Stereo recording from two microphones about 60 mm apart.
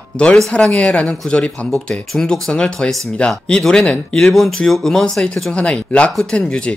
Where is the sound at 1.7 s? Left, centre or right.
Centre.